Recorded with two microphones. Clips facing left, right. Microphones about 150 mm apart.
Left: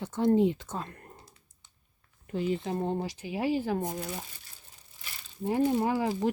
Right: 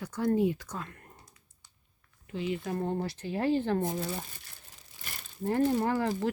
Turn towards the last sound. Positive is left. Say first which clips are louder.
# left 1 dB
turn(degrees=10)  # may be behind; listen again after turning